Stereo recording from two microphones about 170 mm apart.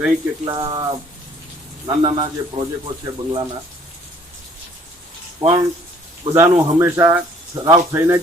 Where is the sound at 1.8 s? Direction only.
25° right (ahead or behind).